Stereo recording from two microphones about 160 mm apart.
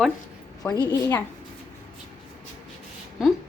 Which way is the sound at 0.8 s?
10° left (ahead or behind).